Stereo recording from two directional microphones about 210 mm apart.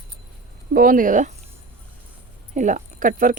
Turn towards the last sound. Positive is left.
turn(degrees=-40)  # may be behind; listen again after turning